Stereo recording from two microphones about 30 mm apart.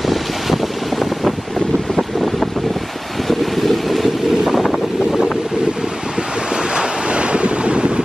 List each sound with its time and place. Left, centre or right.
0.0 s vehicle: centre
3.3 s wind noise: centre
6.5 s waves: right